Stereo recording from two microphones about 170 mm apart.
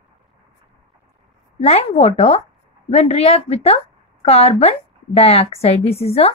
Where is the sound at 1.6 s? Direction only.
40° left (ahead or behind).